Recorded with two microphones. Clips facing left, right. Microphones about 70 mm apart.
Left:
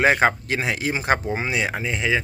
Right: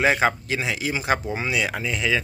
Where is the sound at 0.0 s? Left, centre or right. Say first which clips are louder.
Left 2 dB; left.